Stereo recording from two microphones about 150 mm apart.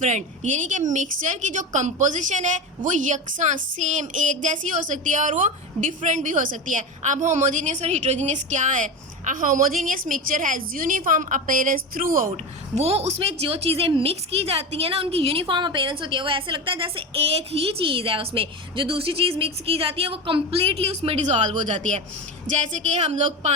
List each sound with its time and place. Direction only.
0.0 s a woman's voice: 55° right (ahead or behind)
12.7 s a woman's voice: 45° right (ahead or behind)